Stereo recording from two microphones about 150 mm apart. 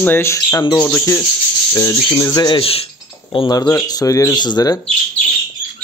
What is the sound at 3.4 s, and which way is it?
Speech, 20° left (ahead or behind).